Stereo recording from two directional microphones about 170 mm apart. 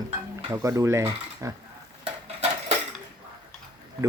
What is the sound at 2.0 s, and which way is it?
Dishes, 35° right (ahead or behind).